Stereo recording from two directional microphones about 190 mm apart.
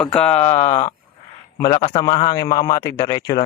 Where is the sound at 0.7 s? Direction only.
35° left (ahead or behind).